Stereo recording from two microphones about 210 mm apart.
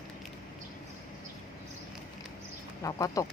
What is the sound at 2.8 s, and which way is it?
Speech, 15° left (ahead or behind).